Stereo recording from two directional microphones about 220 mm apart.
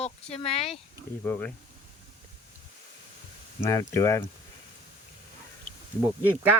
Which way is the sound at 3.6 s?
15° left (ahead or behind).